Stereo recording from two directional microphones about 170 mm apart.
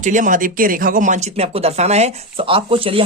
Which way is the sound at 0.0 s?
50° right (ahead or behind).